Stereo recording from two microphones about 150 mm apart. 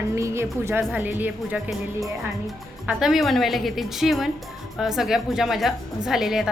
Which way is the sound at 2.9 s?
5° right (ahead or behind).